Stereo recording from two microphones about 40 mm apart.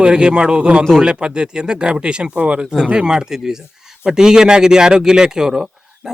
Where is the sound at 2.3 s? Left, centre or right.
Right.